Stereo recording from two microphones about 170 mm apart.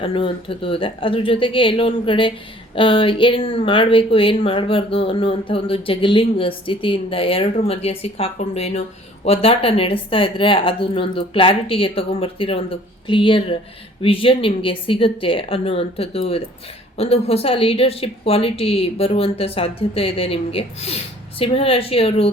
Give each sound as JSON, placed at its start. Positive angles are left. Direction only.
{"t": 0.0, "sound": "speech", "side_deg": 30}